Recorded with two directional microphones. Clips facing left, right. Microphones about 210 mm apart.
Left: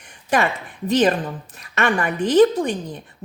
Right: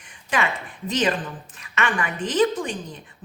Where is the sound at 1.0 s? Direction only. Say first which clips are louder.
Left 5 dB; 40° left (ahead or behind).